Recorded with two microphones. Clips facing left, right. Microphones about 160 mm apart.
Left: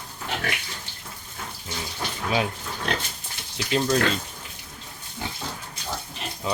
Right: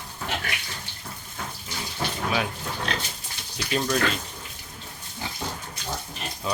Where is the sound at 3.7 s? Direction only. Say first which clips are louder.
Left 3 dB; 20° left (ahead or behind).